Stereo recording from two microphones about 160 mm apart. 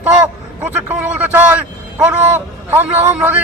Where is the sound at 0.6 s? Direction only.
10° right (ahead or behind).